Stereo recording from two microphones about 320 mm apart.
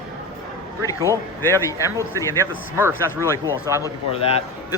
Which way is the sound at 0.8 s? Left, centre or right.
Centre.